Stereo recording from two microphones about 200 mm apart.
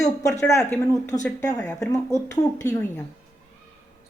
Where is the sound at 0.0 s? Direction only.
15° left (ahead or behind).